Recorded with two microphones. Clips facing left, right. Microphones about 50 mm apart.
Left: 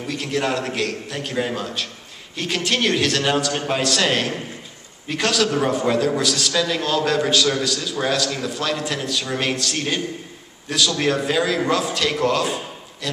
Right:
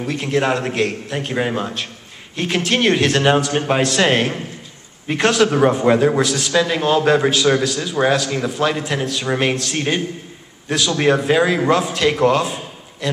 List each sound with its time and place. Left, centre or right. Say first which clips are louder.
0.1 s a man's voice: right 4 dB; right